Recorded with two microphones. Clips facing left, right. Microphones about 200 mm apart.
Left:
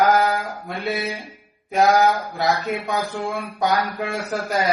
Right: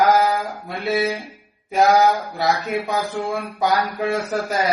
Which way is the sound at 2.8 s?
Centre (ahead or behind).